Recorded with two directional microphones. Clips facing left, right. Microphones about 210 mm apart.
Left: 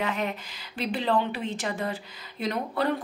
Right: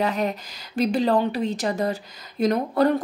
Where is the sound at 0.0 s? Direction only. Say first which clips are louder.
Right 5 dB; 35° right (ahead or behind).